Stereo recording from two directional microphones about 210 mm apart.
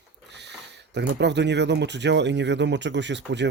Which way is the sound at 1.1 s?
55° right (ahead or behind).